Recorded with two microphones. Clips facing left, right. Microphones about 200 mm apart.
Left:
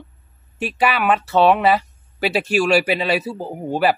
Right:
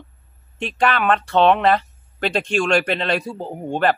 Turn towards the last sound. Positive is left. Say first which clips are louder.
# left 1 dB
turn(degrees=5)  # may be behind; listen again after turning